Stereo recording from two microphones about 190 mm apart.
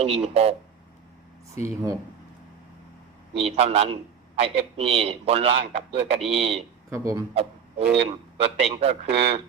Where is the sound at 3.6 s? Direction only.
30° right (ahead or behind).